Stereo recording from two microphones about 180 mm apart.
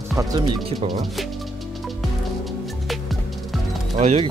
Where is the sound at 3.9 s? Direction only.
35° right (ahead or behind).